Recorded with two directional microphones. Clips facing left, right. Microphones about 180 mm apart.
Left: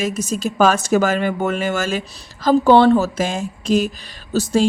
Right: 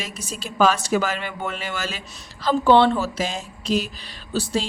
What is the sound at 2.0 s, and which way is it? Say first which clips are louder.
A woman's voice: left 5 dB; 35° left (ahead or behind).